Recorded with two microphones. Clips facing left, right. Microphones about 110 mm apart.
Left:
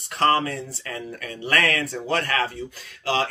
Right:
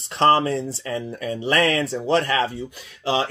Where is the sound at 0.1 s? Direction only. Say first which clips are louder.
Right 4 dB; 25° right (ahead or behind).